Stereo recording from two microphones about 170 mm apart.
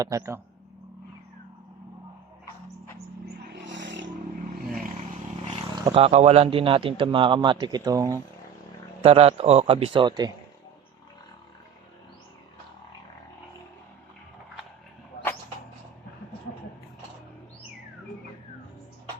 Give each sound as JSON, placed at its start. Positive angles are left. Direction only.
{"t": 0.0, "sound": "speech", "side_deg": -20}
{"t": 3.7, "sound": "a sound", "side_deg": -90}
{"t": 5.7, "sound": "speech", "side_deg": -30}
{"t": 9.0, "sound": "speech", "side_deg": -35}